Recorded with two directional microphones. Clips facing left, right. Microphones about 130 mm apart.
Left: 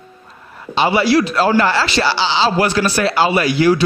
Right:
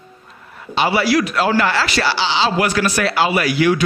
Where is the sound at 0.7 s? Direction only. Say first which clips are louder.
Left 2 dB; 25° left (ahead or behind).